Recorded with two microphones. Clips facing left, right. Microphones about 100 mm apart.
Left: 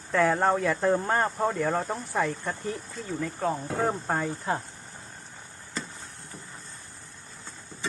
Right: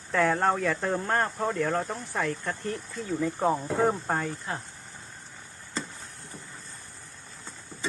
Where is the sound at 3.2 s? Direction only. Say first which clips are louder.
Right 3 dB; 15° right (ahead or behind).